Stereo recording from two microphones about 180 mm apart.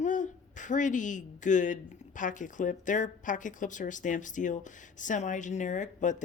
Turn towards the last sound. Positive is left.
turn(degrees=45)  # may be behind; listen again after turning